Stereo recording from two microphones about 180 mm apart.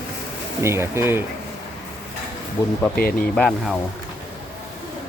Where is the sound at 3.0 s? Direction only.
55° left (ahead or behind).